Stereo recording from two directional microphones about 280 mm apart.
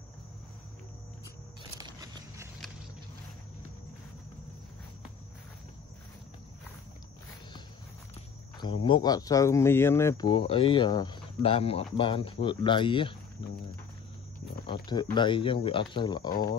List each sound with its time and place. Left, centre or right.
1.6 s a sound: centre
8.5 s speech: centre
14.7 s speech: centre